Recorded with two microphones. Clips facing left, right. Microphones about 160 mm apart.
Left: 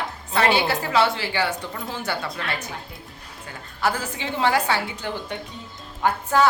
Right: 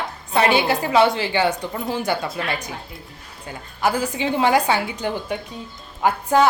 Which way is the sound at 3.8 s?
15° right (ahead or behind).